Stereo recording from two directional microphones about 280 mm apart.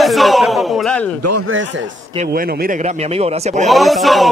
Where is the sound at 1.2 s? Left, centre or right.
Right.